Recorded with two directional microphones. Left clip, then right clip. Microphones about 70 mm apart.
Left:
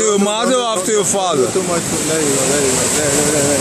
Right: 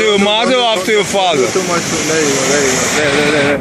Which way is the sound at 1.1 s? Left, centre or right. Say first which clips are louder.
Right 4 dB; left.